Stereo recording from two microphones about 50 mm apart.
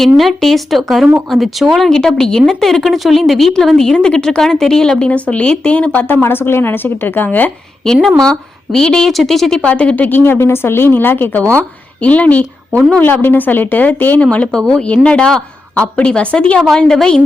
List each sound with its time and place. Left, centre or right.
0.0 s a woman's voice: centre
5.0 s speech: left
6.2 s a woman's voice: left
8.0 s a woman's voice: centre
9.1 s speech: centre
9.6 s a woman's voice: left
10.3 s a woman's voice: left
12.0 s a woman's voice: left
13.0 s a woman's voice: left
14.3 s speech: left
16.6 s a woman's voice: centre